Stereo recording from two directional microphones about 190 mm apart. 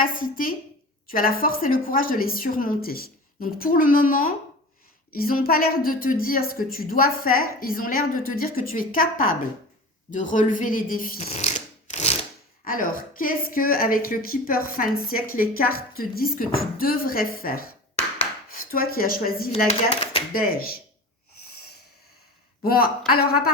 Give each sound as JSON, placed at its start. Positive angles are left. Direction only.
{"t": 0.0, "sound": "a woman's voice", "side_deg": 45}
{"t": 22.6, "sound": "a woman's voice", "side_deg": 50}